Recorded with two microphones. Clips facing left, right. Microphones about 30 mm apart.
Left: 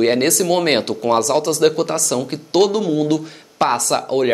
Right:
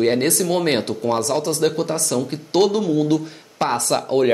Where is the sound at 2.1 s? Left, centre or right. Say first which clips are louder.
Left 2 dB; left.